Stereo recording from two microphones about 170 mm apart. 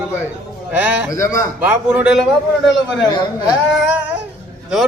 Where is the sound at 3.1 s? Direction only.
25° left (ahead or behind).